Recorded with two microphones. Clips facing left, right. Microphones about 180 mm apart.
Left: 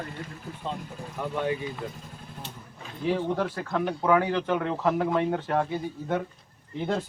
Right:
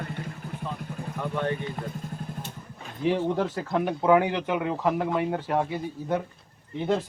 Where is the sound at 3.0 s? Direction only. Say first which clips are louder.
Right 2 dB; 15° right (ahead or behind).